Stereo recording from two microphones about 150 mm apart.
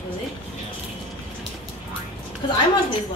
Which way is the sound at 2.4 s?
30° left (ahead or behind).